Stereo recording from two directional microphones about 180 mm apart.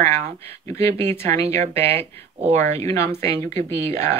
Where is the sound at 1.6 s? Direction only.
35° right (ahead or behind).